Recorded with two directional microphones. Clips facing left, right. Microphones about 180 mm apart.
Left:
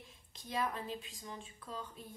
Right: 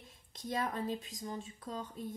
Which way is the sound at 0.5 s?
45° right (ahead or behind).